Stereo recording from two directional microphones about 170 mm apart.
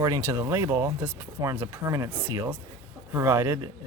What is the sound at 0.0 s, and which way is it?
Speech, 20° right (ahead or behind).